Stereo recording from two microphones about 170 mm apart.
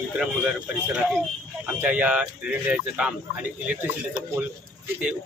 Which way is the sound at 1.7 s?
10° right (ahead or behind).